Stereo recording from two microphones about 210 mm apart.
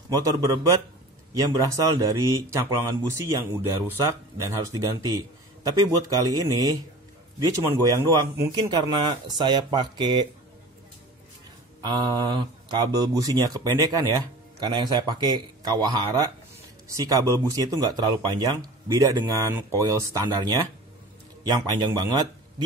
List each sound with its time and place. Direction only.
0.1 s speech: 15° right (ahead or behind)
11.8 s speech: 20° right (ahead or behind)